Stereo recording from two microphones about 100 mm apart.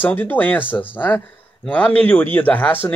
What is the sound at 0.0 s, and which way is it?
Speech, 20° left (ahead or behind).